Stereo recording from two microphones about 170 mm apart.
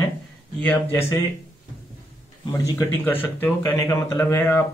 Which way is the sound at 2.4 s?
15° left (ahead or behind).